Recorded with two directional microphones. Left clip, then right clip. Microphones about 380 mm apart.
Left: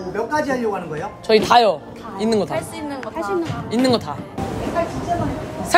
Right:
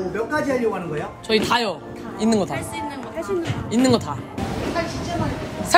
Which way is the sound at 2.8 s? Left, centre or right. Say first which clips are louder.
Left 3 dB; centre.